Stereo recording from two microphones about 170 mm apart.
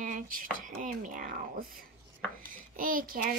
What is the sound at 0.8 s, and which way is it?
Speech, 50° right (ahead or behind).